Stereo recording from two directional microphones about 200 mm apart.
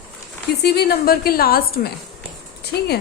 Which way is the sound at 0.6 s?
50° left (ahead or behind).